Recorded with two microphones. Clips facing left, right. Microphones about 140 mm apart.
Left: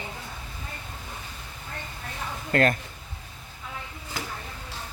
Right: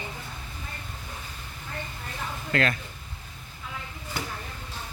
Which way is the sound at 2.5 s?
45° left (ahead or behind).